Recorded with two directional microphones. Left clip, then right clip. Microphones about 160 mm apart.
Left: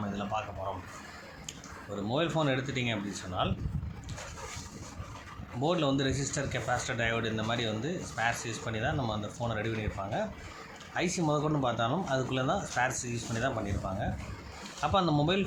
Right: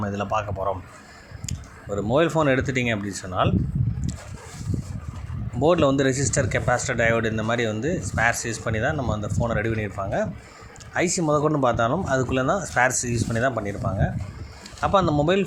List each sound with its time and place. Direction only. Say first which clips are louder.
0.0 s a sound: right 9 dB; 45° right (ahead or behind)
1.5 s speech: right 11 dB; 40° right (ahead or behind)
5.6 s speech: right 10 dB; 45° right (ahead or behind)